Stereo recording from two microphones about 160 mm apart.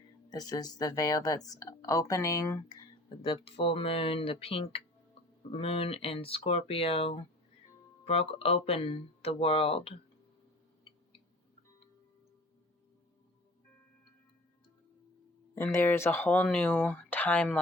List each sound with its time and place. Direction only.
0.3 s speech: 25° left (ahead or behind)
15.5 s speech: 15° left (ahead or behind)